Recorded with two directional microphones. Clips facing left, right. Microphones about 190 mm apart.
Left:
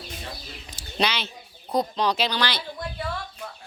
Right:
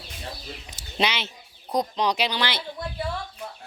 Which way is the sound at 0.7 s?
20° right (ahead or behind).